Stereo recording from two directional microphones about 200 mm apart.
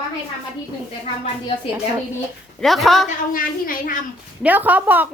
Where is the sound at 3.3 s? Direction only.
45° left (ahead or behind).